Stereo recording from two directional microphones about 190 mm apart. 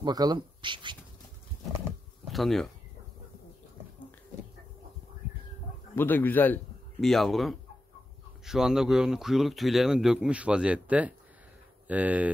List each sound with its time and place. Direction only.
0.0 s speech: 20° right (ahead or behind)
2.2 s speech: centre (ahead or behind)
5.9 s a man's voice: 10° left (ahead or behind); by 12.3 s 10° right (ahead or behind)